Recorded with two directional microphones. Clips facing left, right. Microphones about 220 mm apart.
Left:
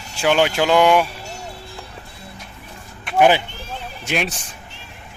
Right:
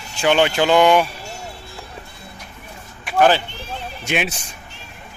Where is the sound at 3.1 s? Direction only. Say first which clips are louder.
Left 1 dB; 15° left (ahead or behind).